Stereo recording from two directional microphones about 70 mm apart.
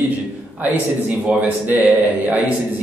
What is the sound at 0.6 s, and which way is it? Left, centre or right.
A man's voice, right.